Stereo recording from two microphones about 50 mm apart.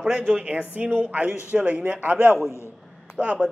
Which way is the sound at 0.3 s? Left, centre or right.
Right.